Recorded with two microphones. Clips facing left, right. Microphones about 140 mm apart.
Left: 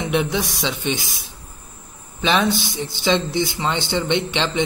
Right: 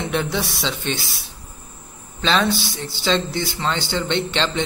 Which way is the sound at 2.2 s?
15° left (ahead or behind).